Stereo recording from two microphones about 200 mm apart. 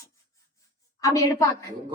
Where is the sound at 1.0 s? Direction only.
15° left (ahead or behind).